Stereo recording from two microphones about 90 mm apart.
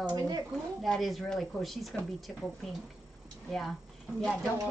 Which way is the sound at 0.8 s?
Centre (ahead or behind).